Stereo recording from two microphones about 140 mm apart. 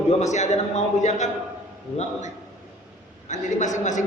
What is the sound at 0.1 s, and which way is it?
Speech, 55° left (ahead or behind).